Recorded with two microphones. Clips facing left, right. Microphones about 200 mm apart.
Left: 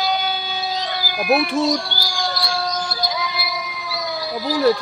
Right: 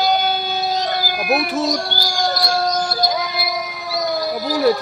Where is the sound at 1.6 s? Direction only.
45° right (ahead or behind).